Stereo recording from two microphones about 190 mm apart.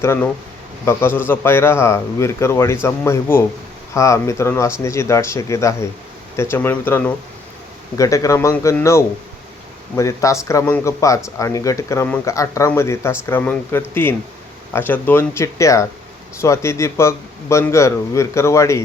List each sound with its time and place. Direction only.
0.0 s speech: 15° left (ahead or behind)